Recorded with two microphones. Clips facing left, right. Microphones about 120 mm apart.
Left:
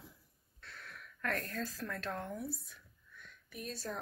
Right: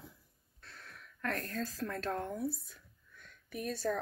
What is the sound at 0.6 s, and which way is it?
Speech, 35° right (ahead or behind).